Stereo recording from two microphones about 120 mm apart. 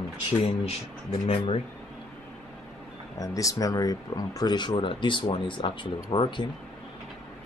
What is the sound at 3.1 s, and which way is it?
Speech, 30° left (ahead or behind).